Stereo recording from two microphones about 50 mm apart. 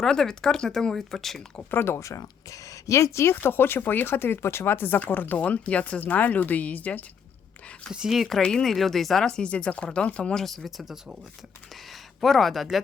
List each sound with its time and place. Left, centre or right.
0.0 s speech: centre
1.7 s speech: left
2.0 s speech: left
3.4 s speech: left
4.9 s speech: left
5.4 s speech: left
8.1 s speech: centre
8.4 s speech: centre
8.7 s speech: centre; by 10.3 s left
10.3 s speech: centre